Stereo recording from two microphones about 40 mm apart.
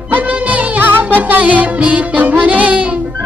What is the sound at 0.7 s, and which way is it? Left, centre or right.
Music, right.